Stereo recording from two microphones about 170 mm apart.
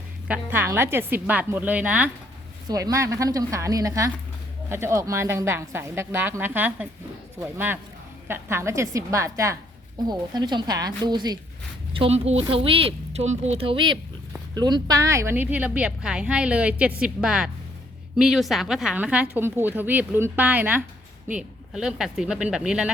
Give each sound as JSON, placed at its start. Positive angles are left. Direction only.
{"t": 0.3, "sound": "a woman's voice", "side_deg": -10}
{"t": 2.6, "sound": "a woman's voice", "side_deg": -20}
{"t": 8.3, "sound": "a woman's voice", "side_deg": -15}
{"t": 11.9, "sound": "a woman's voice", "side_deg": -35}